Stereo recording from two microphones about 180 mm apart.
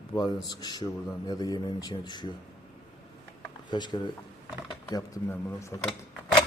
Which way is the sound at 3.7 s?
25° left (ahead or behind).